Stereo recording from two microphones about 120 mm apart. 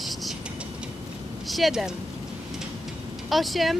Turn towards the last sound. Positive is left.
turn(degrees=0)  # may be behind; listen again after turning